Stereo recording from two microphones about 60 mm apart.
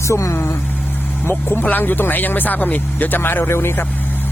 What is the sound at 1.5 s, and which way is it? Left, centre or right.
Speech, left.